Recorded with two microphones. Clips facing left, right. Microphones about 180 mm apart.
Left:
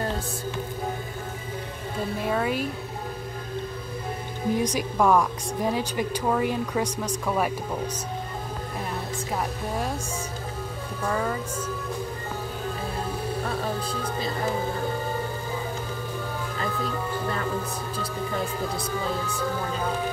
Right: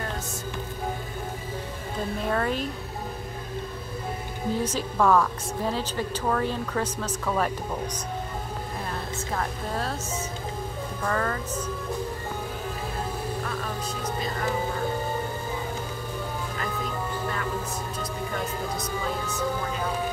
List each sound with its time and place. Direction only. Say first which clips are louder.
2.2 s a woman's voice: left 1 dB; 5° left (ahead or behind)
4.6 s a woman's voice: left 1 dB; 15° left (ahead or behind)
9.3 s a woman's voice: left 1 dB; 10° left (ahead or behind)
11.1 s a woman's voice: left 1 dB; 10° left (ahead or behind)
13.4 s music: left 3 dB; 35° left (ahead or behind)